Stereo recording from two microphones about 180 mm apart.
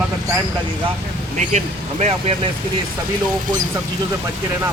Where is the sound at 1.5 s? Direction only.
40° right (ahead or behind).